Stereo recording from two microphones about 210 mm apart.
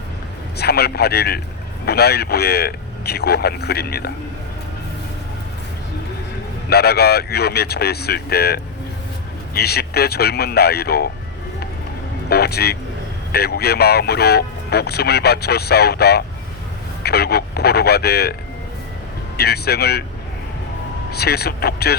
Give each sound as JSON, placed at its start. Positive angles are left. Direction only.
{"t": 0.5, "sound": "speech", "side_deg": 50}
{"t": 6.7, "sound": "speech", "side_deg": 50}
{"t": 12.3, "sound": "speech", "side_deg": 50}
{"t": 19.4, "sound": "speech", "side_deg": 50}
{"t": 21.1, "sound": "speech", "side_deg": 50}